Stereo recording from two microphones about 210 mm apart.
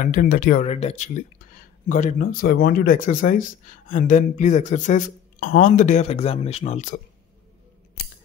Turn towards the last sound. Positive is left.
turn(degrees=35)  # may be behind; listen again after turning